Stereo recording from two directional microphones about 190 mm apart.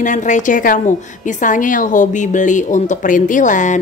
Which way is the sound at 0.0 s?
40° left (ahead or behind).